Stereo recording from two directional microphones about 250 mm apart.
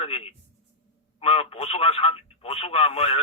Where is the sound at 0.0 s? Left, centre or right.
Left.